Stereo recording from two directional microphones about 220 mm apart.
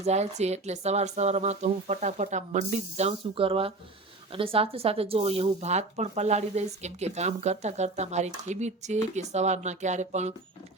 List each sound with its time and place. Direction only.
0.0 s speech: 30° right (ahead or behind)